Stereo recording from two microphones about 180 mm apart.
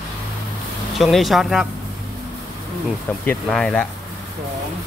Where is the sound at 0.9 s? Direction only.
Centre (ahead or behind).